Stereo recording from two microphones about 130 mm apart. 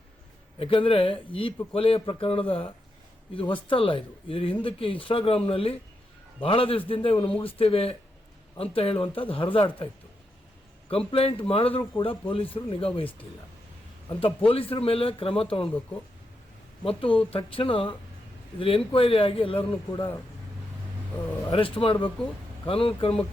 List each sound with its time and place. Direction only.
0.6 s speech: 45° left (ahead or behind)
17.0 s speech: 40° left (ahead or behind)
19.9 s speech: 30° left (ahead or behind)
21.5 s speech: 45° left (ahead or behind)